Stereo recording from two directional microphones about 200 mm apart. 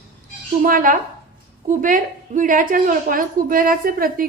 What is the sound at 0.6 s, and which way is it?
A woman's voice, 45° right (ahead or behind).